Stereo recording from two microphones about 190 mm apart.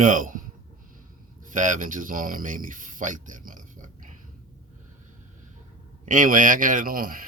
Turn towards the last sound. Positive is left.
turn(degrees=-50)  # may be behind; listen again after turning